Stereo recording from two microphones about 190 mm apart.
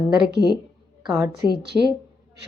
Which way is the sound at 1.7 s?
5° right (ahead or behind).